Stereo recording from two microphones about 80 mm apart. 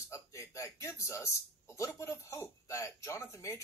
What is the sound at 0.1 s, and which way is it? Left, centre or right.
Speech, left.